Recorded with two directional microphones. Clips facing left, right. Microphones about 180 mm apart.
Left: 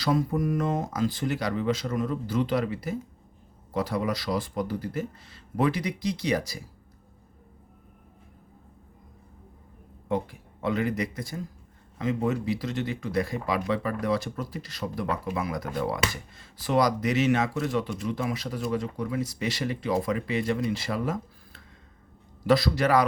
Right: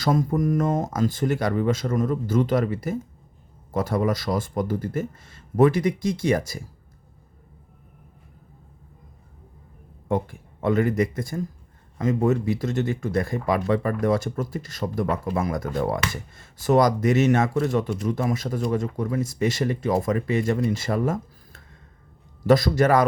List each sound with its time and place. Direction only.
0.0 s speech: 45° right (ahead or behind)
10.1 s speech: 50° right (ahead or behind)